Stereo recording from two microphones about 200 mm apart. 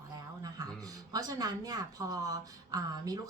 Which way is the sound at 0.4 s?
20° right (ahead or behind).